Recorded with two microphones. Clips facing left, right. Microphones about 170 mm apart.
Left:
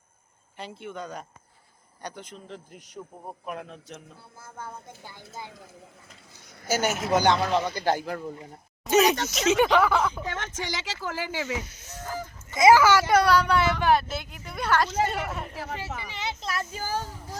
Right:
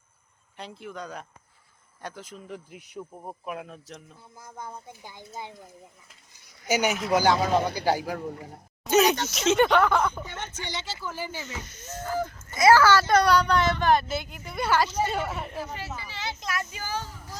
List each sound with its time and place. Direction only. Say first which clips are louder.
0.5 s speech: left 1 dB; centre (ahead or behind)
4.4 s speech: even; 15° right (ahead or behind)
6.7 s speech: right 1 dB; 15° right (ahead or behind)
7.5 s speech: right 1 dB; 55° right (ahead or behind)
7.9 s speech: even; 5° right (ahead or behind)
10.2 s speech: left 4 dB; 90° left
12.5 s speech: left 1 dB; 20° left (ahead or behind); by 15.5 s centre (ahead or behind)
15.5 s speech: even; 90° left
16.0 s a sound: left 2 dB; 20° left (ahead or behind)
16.4 s speech: left 1 dB; 35° left (ahead or behind)